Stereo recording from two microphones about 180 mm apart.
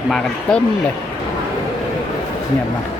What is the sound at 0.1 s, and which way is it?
Speech, 5° left (ahead or behind).